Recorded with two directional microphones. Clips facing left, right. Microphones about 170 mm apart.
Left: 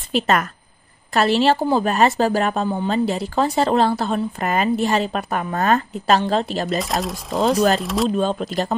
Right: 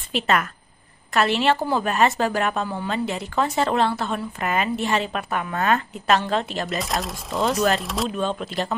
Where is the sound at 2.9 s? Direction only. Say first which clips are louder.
Left 3 dB; 35° left (ahead or behind).